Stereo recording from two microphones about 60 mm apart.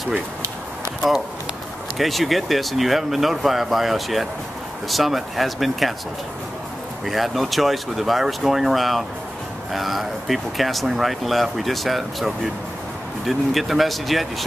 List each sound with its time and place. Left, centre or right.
2.0 s speech: centre
7.1 s speech: centre